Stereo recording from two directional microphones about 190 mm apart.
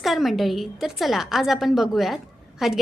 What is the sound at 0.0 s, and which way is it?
A woman's voice, centre (ahead or behind).